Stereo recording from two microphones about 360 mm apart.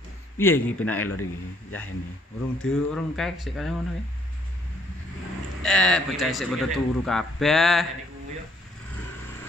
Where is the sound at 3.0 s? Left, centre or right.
Centre.